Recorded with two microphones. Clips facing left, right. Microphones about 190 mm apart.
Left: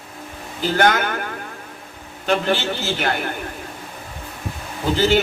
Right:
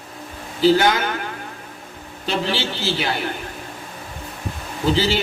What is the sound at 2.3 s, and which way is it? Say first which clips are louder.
Speech: left 3 dB; 50° left (ahead or behind).